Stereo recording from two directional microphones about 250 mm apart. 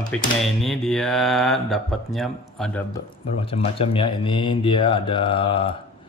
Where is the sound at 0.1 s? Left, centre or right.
Centre.